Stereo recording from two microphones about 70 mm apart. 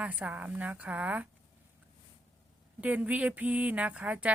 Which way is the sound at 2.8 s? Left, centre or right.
Right.